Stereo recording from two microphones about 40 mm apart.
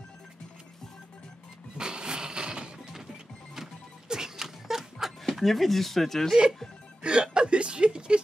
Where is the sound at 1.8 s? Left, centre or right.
Right.